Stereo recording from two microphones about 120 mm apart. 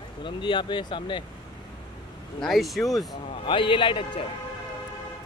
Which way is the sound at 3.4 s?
45° left (ahead or behind).